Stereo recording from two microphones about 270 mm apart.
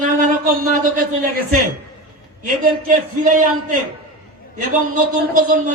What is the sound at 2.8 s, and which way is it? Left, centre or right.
Speech, right.